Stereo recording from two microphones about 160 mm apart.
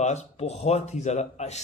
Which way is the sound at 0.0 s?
45° left (ahead or behind).